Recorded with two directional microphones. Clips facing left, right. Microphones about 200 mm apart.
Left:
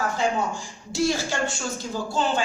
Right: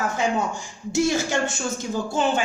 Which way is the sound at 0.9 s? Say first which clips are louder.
Right 3 dB; 20° right (ahead or behind).